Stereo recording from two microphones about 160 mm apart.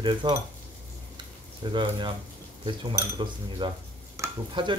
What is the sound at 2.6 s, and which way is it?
Speech, 30° right (ahead or behind).